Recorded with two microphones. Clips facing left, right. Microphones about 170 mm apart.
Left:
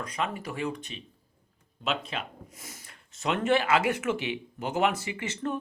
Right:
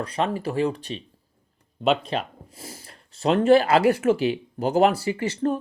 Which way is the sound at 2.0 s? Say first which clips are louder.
Right 8 dB; 35° right (ahead or behind).